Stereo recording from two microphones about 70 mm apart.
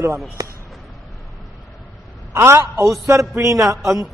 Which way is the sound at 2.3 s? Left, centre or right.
Right.